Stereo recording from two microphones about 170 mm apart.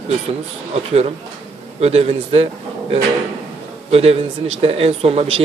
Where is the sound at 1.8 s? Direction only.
40° right (ahead or behind).